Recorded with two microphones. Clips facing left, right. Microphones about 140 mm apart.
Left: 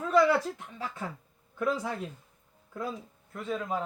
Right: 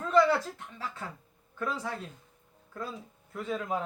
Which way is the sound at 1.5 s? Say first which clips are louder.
Left 4 dB; 15° left (ahead or behind).